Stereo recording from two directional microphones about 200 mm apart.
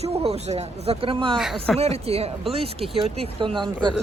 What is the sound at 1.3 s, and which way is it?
Speech, centre (ahead or behind).